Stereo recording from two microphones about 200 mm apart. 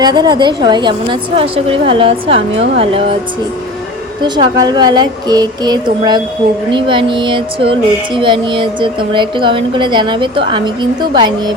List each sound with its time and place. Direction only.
0.0 s speech: 20° right (ahead or behind)
4.2 s speech: 20° right (ahead or behind)